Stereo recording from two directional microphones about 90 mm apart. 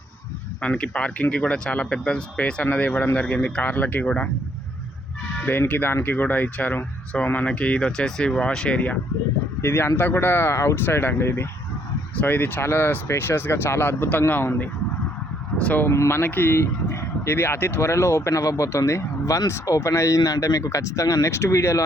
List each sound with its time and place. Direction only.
0.6 s speech: 15° left (ahead or behind)
5.5 s speech: 20° left (ahead or behind)
9.6 s speech: 25° left (ahead or behind)
15.9 s speech: 30° left (ahead or behind)